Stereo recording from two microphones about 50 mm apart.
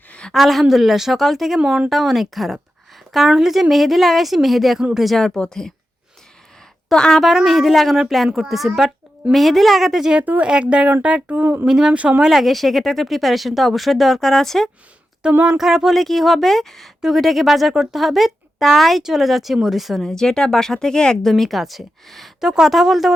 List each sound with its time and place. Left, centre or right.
0.3 s speech: centre
1.5 s speech: centre
1.9 s speech: centre
6.9 s speech: centre
10.4 s speech: centre
11.6 s speech: centre
15.3 s child singing: right
15.5 s speech: centre
20.1 s speech: centre